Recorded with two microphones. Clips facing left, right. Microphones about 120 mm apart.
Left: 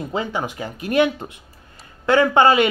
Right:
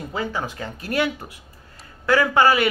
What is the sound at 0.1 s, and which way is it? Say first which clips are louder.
Speech: left 1 dB; 20° left (ahead or behind).